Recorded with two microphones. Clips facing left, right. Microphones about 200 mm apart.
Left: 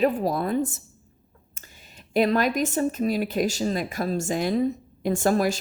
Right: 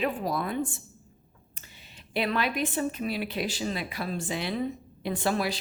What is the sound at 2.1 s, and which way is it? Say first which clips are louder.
Speech: left 7 dB; 45° left (ahead or behind).